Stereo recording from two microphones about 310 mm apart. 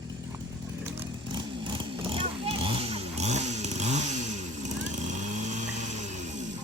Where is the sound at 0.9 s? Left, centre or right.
Centre.